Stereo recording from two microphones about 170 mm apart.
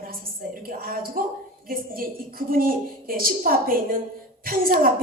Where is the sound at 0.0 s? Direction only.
60° right (ahead or behind).